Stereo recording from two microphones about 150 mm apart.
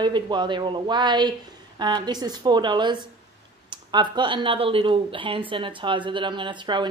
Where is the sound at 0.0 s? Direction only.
30° right (ahead or behind).